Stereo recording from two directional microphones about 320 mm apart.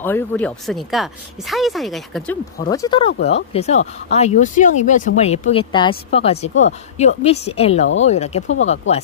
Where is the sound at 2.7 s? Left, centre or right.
Centre.